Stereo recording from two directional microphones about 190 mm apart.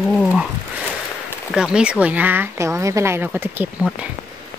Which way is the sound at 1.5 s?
5° right (ahead or behind).